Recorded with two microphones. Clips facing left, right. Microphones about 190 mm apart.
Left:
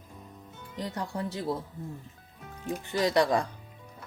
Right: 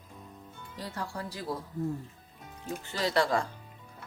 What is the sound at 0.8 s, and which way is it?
Speech, 20° left (ahead or behind).